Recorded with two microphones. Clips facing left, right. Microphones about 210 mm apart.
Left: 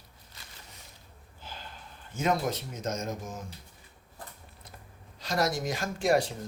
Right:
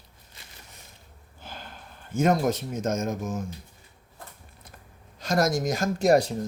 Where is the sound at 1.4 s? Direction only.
55° right (ahead or behind).